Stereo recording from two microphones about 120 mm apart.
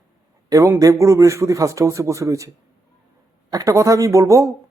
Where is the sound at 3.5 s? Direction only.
30° right (ahead or behind).